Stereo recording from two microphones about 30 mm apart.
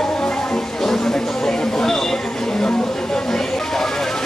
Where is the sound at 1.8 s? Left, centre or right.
Centre.